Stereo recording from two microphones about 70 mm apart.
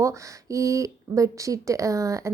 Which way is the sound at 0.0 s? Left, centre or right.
Right.